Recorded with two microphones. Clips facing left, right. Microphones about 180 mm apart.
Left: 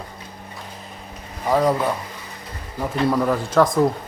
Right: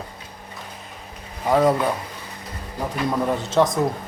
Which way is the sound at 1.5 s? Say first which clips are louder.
Right 1 dB; centre (ahead or behind).